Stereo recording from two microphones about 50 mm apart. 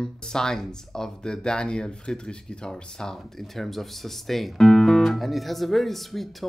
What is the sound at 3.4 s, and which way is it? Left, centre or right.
Guitar, centre.